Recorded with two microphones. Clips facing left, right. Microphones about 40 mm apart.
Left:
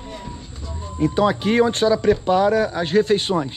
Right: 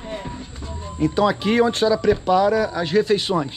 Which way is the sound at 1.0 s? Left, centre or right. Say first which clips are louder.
Even; right.